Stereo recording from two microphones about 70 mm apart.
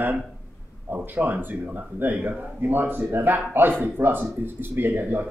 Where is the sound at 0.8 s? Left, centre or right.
Right.